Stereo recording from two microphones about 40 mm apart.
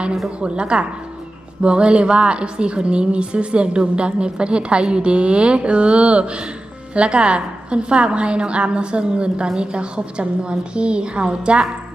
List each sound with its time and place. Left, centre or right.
0.3 s a woman's voice: right